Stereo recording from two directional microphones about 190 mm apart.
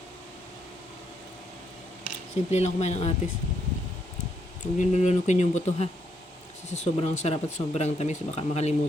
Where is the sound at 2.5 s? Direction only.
35° left (ahead or behind).